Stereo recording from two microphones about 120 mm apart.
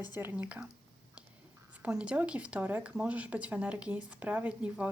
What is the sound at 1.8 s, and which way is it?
Speech, 10° right (ahead or behind).